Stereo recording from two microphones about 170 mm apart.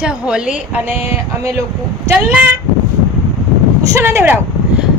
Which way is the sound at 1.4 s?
15° right (ahead or behind).